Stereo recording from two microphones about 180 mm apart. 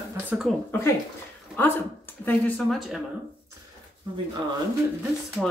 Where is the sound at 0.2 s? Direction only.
5° right (ahead or behind).